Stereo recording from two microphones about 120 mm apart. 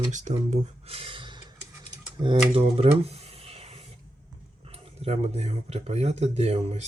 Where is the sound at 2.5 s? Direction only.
50° right (ahead or behind).